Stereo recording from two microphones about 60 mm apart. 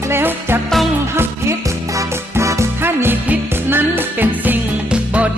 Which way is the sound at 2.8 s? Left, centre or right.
Right.